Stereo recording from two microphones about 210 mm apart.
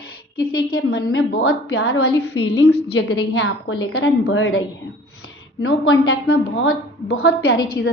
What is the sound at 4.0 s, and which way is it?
Speech, 50° left (ahead or behind).